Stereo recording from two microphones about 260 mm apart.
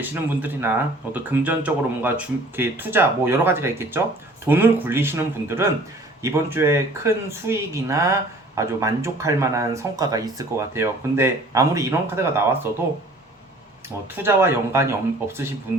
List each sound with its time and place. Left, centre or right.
0.0 s speech: centre
14.2 s speech: centre